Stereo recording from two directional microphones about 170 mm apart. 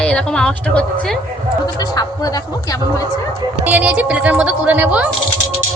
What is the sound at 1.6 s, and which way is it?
Speech, 25° left (ahead or behind).